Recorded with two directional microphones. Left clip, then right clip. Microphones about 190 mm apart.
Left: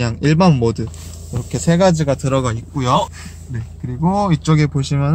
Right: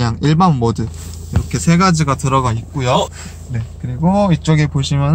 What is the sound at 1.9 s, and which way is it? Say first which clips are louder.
Speech: right 2 dB; 10° left (ahead or behind).